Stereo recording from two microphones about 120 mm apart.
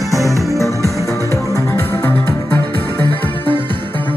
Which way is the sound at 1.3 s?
25° left (ahead or behind).